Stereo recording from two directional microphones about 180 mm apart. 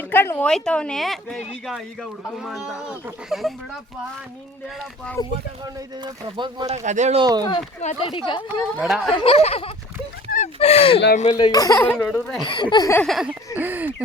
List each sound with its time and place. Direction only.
0.0 s speech: 10° left (ahead or behind)
5.2 s speech: 20° left (ahead or behind)
5.6 s speech: 25° right (ahead or behind)
6.7 s speech: 40° right (ahead or behind)
7.2 s speech: 25° right (ahead or behind)
7.8 s speech: 35° left (ahead or behind)
8.8 s speech: centre (ahead or behind)
9.1 s speech: 30° left (ahead or behind)
11.3 s speech: 25° left (ahead or behind); by 12.4 s 5° left (ahead or behind)
12.5 s speech: 25° left (ahead or behind)
13.0 s speech: centre (ahead or behind)